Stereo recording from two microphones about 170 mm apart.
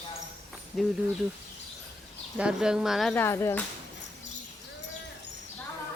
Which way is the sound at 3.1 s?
15° left (ahead or behind).